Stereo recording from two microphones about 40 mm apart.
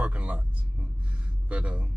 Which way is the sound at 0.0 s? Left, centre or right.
Right.